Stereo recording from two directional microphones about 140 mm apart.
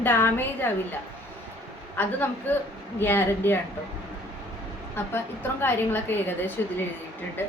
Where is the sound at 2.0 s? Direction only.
15° left (ahead or behind).